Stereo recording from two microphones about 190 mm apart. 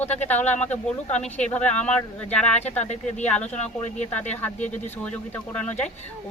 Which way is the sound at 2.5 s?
35° left (ahead or behind).